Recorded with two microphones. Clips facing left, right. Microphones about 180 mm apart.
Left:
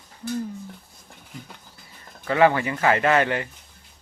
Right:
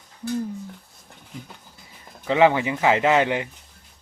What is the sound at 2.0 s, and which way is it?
Speech, 15° right (ahead or behind).